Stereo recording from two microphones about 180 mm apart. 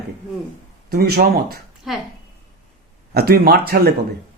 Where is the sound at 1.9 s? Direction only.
Centre (ahead or behind).